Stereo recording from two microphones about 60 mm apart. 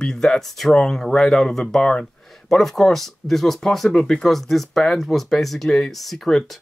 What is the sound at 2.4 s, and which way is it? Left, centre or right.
Speech, centre.